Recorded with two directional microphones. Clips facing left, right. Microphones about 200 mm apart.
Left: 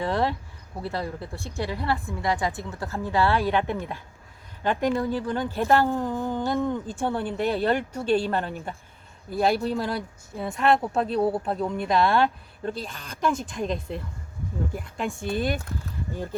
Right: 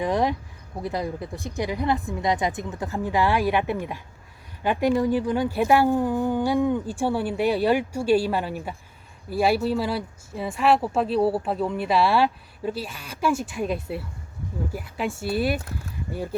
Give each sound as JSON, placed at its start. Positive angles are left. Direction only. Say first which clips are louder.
{"t": 0.0, "sound": "speech", "louder": "right 2 dB", "side_deg": -15}